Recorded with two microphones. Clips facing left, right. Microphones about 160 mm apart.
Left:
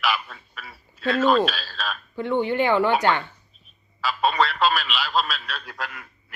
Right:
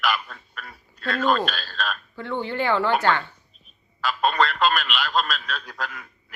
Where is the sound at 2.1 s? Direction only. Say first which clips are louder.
Left 6 dB; 15° left (ahead or behind).